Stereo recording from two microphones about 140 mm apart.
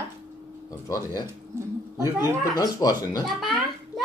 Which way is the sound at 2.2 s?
25° left (ahead or behind).